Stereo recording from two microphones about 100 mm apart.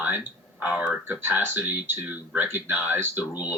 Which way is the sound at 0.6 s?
15° right (ahead or behind).